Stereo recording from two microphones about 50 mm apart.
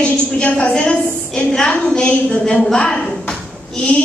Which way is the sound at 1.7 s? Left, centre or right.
Left.